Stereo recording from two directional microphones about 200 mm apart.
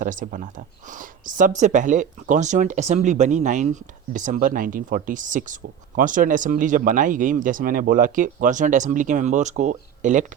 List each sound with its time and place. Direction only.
0.0 s speech: 40° right (ahead or behind)